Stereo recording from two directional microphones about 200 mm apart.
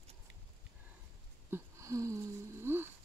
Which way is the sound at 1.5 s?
15° right (ahead or behind).